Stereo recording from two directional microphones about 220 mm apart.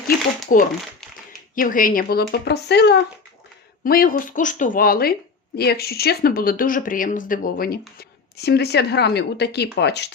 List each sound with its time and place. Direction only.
0.4 s a woman's voice: 40° left (ahead or behind)